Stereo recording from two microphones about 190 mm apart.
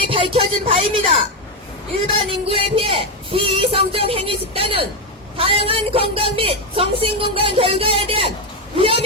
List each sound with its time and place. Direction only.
0.0 s speech: 30° right (ahead or behind)